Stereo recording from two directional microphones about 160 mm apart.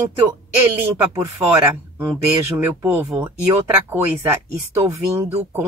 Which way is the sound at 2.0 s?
15° right (ahead or behind).